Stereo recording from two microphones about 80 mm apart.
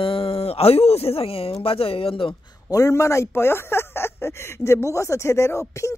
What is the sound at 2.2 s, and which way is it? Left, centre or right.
Speech, left.